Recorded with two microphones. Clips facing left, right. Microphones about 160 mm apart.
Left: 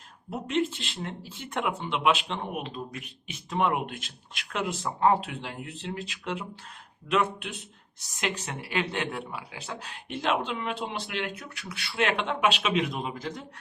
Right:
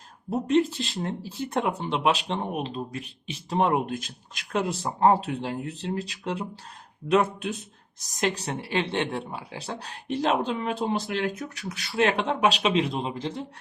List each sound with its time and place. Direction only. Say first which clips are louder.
0.3 s speech: right 6 dB; 40° right (ahead or behind)
7.9 s speech: right 5 dB; 40° right (ahead or behind)